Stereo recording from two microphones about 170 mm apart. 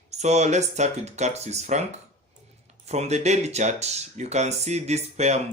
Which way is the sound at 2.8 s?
40° right (ahead or behind).